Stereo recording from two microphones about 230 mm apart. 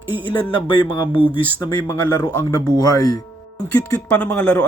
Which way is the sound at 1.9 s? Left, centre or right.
Centre.